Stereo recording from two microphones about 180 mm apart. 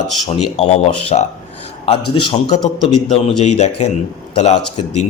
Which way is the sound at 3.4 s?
40° left (ahead or behind).